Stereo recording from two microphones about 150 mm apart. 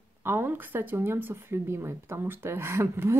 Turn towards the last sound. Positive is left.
turn(degrees=-15)  # may be behind; listen again after turning